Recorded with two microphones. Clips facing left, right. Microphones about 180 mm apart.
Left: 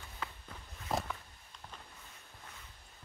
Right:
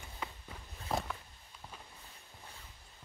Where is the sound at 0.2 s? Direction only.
15° right (ahead or behind).